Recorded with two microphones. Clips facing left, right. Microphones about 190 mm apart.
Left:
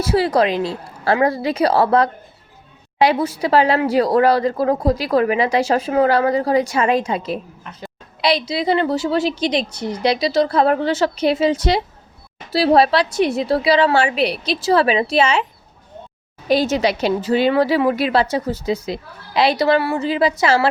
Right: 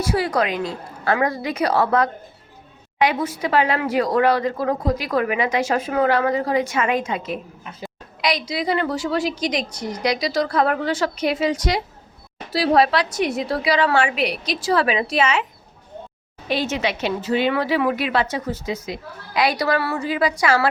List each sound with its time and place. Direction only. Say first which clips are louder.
0.0 s a woman's voice: left 4 dB; 30° left (ahead or behind)
16.5 s a woman's voice: left 6 dB; 35° left (ahead or behind)